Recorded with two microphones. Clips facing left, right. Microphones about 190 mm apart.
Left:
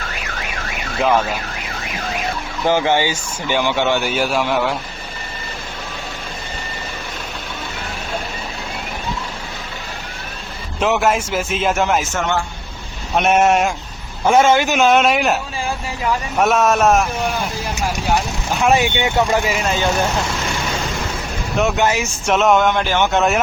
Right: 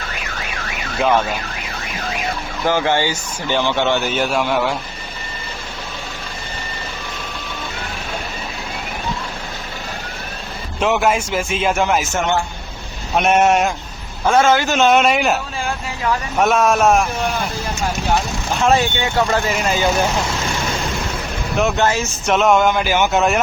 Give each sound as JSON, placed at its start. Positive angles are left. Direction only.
{"t": 0.9, "sound": "a man's voice", "side_deg": 0}
{"t": 2.6, "sound": "a man's voice", "side_deg": 15}
{"t": 10.8, "sound": "a man's voice", "side_deg": 0}
{"t": 13.1, "sound": "a man's voice", "side_deg": 0}
{"t": 14.3, "sound": "a man's voice", "side_deg": 20}
{"t": 14.8, "sound": "a man's voice", "side_deg": 0}
{"t": 18.6, "sound": "a man's voice", "side_deg": 15}
{"t": 19.5, "sound": "a man's voice", "side_deg": 0}
{"t": 21.6, "sound": "a man's voice", "side_deg": 5}